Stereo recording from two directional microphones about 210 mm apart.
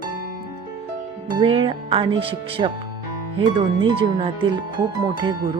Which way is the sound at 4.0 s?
25° right (ahead or behind).